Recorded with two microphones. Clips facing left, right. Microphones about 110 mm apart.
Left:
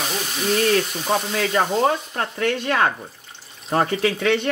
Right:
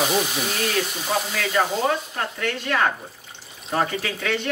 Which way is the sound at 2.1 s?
35° left (ahead or behind).